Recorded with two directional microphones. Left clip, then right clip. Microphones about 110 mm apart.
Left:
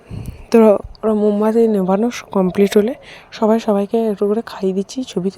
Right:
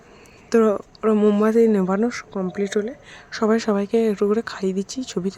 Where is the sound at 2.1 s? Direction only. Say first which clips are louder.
Left 9 dB; 50° left (ahead or behind).